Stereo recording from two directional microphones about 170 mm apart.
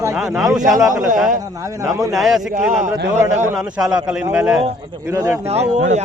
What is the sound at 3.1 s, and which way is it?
Speech, 45° right (ahead or behind).